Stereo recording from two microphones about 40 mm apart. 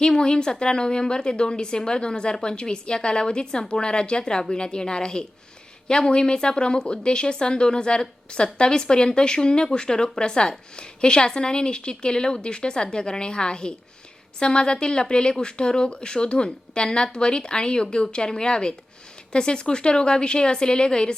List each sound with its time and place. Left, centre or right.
0.0 s speech: left